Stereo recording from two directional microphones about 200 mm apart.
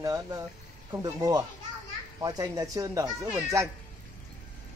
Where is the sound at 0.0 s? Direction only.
15° right (ahead or behind).